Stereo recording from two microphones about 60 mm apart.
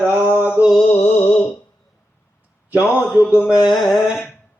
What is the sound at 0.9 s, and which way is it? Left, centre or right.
Music, left.